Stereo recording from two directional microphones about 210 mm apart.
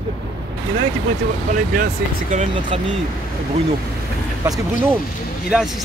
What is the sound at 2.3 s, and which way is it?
Speech, 35° right (ahead or behind).